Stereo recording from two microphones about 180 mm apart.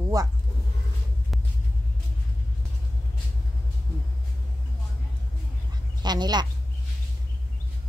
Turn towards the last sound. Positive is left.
turn(degrees=-25)  # may be behind; listen again after turning